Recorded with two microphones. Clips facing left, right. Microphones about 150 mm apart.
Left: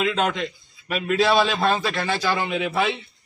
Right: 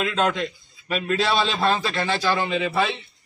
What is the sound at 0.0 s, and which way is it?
A man's voice, 10° left (ahead or behind).